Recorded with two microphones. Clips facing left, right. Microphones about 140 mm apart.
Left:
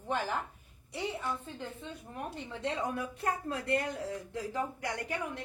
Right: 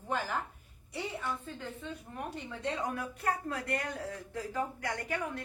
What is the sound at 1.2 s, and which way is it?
Speech, 25° left (ahead or behind).